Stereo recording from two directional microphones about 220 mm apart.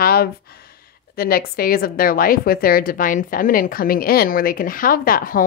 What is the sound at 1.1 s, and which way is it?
A woman's voice, 45° left (ahead or behind).